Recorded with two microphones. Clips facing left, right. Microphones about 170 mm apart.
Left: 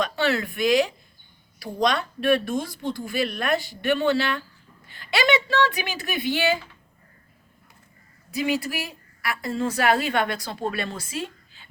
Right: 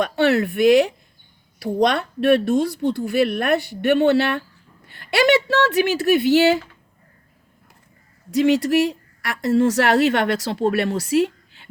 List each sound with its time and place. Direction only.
0.0 s a woman's voice: 60° right (ahead or behind)
8.3 s speech: 85° right